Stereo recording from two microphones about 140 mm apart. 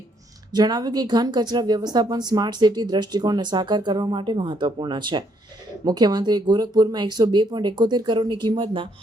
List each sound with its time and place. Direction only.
0.5 s speech: 30° right (ahead or behind)